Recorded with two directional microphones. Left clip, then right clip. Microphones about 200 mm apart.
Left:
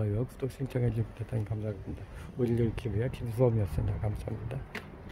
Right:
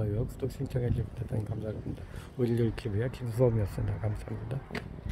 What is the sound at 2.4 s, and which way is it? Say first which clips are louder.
Speech: even; 10° right (ahead or behind).